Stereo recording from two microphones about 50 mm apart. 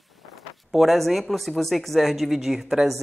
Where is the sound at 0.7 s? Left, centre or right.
Centre.